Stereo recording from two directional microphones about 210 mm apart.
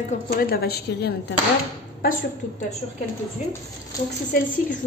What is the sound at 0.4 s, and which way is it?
Speech, 45° left (ahead or behind).